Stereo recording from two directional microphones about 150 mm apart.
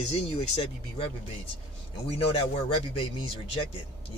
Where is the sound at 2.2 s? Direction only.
40° left (ahead or behind).